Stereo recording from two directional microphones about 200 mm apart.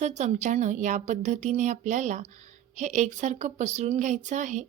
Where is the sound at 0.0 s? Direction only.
35° right (ahead or behind).